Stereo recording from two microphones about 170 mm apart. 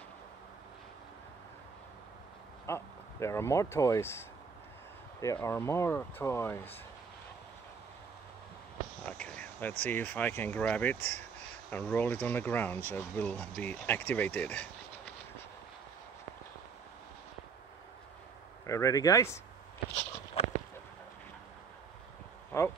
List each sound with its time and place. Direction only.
2.6 s speech: 15° left (ahead or behind)
9.0 s a sound: 5° left (ahead or behind)
9.8 s speech: 10° left (ahead or behind)
18.7 s speech: 20° left (ahead or behind)
20.4 s a sound: 35° left (ahead or behind)
22.5 s speech: 15° left (ahead or behind)